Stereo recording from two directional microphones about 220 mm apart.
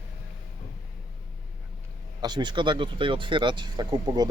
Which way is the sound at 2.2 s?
20° right (ahead or behind).